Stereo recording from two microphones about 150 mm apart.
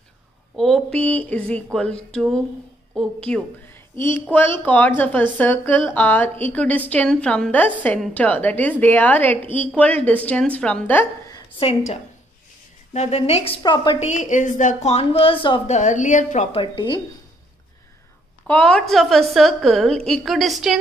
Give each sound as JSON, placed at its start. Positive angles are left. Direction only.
{"t": 0.6, "sound": "a woman's voice", "side_deg": 0}
{"t": 11.6, "sound": "a woman's voice", "side_deg": 45}
{"t": 13.6, "sound": "a woman's voice", "side_deg": 30}
{"t": 13.9, "sound": "a woman's voice", "side_deg": 50}
{"t": 15.6, "sound": "a woman's voice", "side_deg": 50}
{"t": 16.6, "sound": "a woman's voice", "side_deg": 30}
{"t": 18.5, "sound": "a woman's voice", "side_deg": 5}